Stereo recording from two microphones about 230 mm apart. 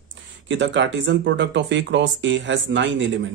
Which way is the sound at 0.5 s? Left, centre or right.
Right.